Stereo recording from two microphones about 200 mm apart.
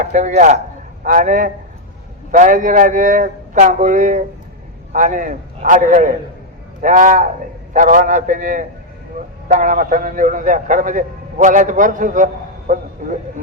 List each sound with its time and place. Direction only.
0.0 s a man's voice: 40° right (ahead or behind)